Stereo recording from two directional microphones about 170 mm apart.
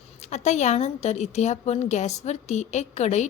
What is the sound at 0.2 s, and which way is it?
A woman's voice, 45° left (ahead or behind).